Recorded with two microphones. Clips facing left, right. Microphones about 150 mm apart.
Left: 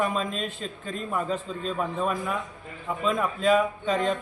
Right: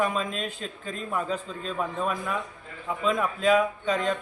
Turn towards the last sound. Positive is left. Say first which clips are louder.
# left 1 dB
turn(degrees=0)  # may be behind; listen again after turning